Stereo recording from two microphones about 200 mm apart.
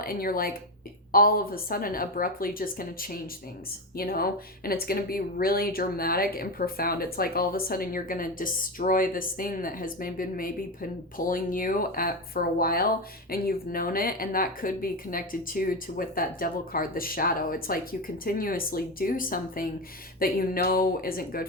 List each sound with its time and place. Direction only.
0.0 s speech: 45° left (ahead or behind)